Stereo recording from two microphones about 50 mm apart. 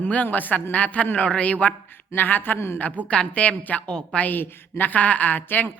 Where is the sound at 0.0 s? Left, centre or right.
Left.